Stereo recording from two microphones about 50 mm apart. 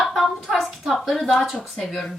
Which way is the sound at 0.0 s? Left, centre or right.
Centre.